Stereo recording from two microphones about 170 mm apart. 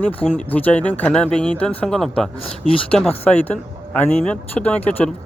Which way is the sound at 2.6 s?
30° left (ahead or behind).